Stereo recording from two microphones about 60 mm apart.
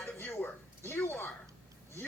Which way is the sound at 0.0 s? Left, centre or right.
Left.